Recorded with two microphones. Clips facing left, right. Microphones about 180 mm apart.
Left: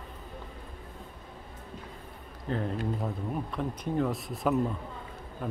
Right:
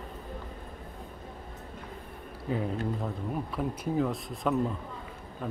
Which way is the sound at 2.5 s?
5° right (ahead or behind).